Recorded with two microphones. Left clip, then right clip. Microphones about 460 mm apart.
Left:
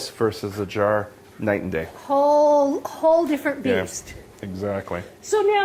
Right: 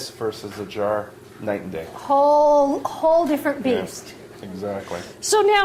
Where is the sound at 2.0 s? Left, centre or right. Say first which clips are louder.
Right 2 dB; centre.